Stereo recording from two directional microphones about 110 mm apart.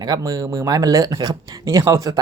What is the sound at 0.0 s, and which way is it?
Speech, 35° right (ahead or behind).